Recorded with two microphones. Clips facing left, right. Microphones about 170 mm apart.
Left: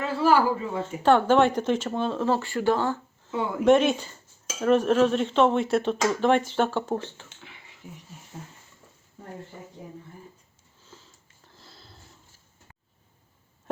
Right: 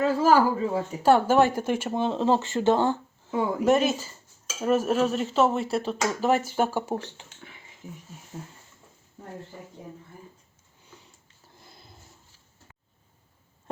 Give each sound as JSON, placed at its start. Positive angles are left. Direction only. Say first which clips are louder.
{"t": 0.0, "sound": "speech", "louder": "right 2 dB", "side_deg": -40}
{"t": 1.0, "sound": "speech", "louder": "even", "side_deg": -10}
{"t": 3.3, "sound": "speech", "louder": "right 2 dB", "side_deg": -40}
{"t": 3.6, "sound": "speech", "louder": "left 4 dB", "side_deg": -5}